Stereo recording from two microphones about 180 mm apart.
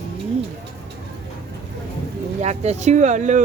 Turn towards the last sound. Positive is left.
turn(degrees=-40)  # may be behind; listen again after turning